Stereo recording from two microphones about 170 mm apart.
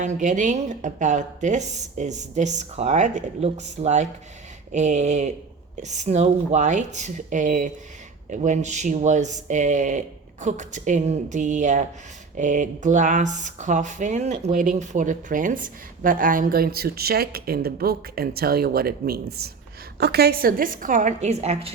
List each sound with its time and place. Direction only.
0.0 s speech: 45° right (ahead or behind)